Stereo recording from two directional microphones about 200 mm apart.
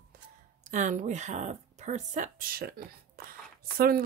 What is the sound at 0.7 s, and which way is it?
Speech, 40° right (ahead or behind).